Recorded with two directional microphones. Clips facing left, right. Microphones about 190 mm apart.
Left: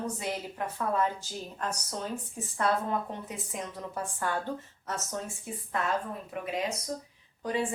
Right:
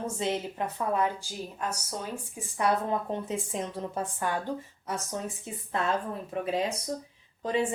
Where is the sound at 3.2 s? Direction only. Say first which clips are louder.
Right 5 dB; 25° right (ahead or behind).